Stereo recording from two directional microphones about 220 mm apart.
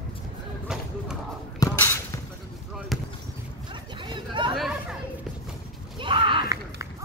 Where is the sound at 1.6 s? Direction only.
10° left (ahead or behind).